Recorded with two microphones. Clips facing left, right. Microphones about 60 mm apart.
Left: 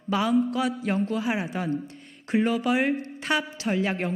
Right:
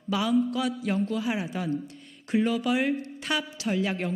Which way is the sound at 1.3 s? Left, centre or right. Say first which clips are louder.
Left 2 dB; left.